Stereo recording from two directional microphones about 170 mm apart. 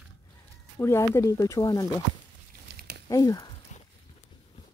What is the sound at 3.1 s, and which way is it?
Speech, 20° left (ahead or behind).